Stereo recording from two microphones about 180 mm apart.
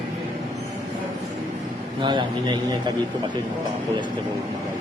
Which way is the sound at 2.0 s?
25° right (ahead or behind).